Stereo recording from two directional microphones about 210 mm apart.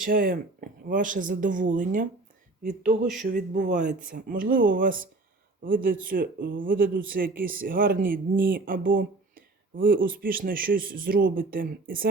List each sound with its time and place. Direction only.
0.0 s speech: 45° right (ahead or behind)
3.2 s speech: 35° right (ahead or behind)